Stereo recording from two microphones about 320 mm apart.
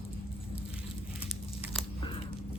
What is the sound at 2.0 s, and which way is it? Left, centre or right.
Biting, centre.